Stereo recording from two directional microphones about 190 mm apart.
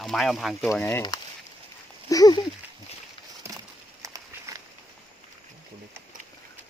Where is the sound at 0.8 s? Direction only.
10° left (ahead or behind).